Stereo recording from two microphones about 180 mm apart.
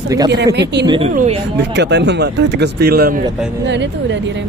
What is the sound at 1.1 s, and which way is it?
Mantra, 45° right (ahead or behind).